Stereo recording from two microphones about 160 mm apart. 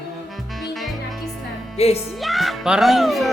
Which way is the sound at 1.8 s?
40° left (ahead or behind).